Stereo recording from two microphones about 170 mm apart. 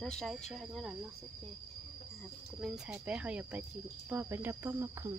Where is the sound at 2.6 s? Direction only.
5° right (ahead or behind).